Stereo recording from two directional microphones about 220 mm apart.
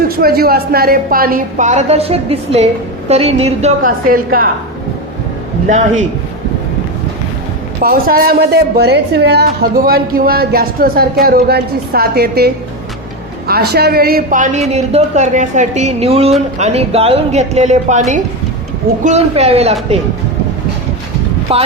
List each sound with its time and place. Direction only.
0.2 s a woman's voice: 45° right (ahead or behind)
5.6 s a woman's voice: 35° right (ahead or behind)
7.8 s a woman's voice: 40° right (ahead or behind)
13.5 s a woman's voice: 45° right (ahead or behind); by 19.7 s 30° right (ahead or behind)
21.5 s a woman's voice: 25° right (ahead or behind)